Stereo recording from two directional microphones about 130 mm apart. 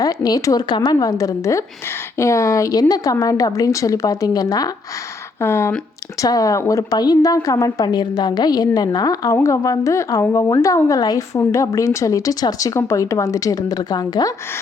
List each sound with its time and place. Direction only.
0.0 s a woman's voice: 30° left (ahead or behind)